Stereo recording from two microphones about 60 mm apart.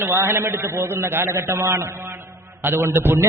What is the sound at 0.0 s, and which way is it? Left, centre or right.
A man's voice, right.